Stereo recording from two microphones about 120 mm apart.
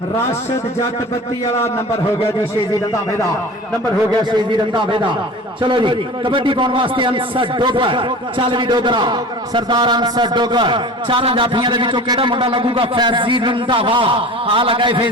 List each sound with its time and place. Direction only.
4.5 s a man's voice: 40° right (ahead or behind)